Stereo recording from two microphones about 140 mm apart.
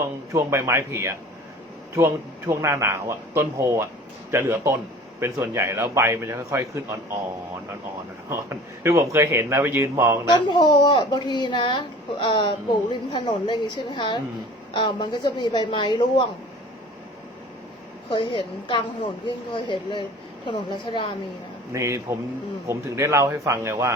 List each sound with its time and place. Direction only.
0.3 s speech: 20° right (ahead or behind)
8.3 s speech: 20° right (ahead or behind)
10.2 s speech: 30° left (ahead or behind)
18.1 s speech: 35° left (ahead or behind)
21.7 s speech: 20° right (ahead or behind)